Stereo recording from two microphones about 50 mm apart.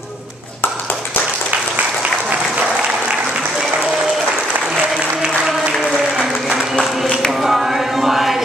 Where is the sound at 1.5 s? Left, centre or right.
Right.